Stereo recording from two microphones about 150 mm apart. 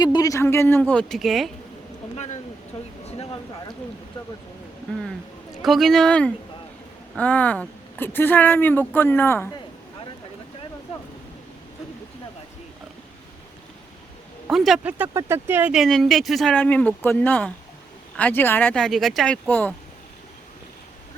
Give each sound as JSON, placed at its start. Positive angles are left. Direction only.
{"t": 0.0, "sound": "speech", "side_deg": 25}
{"t": 2.1, "sound": "a sound", "side_deg": 50}
{"t": 5.6, "sound": "speech", "side_deg": 0}
{"t": 14.5, "sound": "speech", "side_deg": 0}
{"t": 15.7, "sound": "speech", "side_deg": 0}
{"t": 16.6, "sound": "speech", "side_deg": 10}